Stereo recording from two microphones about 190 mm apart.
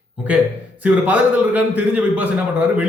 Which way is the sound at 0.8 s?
10° right (ahead or behind).